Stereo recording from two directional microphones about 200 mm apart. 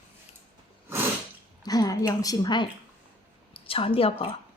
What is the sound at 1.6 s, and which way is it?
A woman's voice, 20° left (ahead or behind).